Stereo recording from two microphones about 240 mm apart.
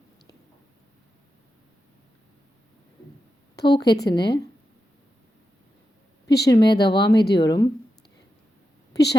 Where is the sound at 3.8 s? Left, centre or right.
Left.